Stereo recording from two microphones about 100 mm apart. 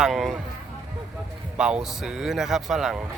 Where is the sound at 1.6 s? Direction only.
10° right (ahead or behind).